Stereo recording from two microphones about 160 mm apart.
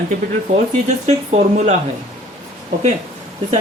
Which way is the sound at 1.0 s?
45° right (ahead or behind).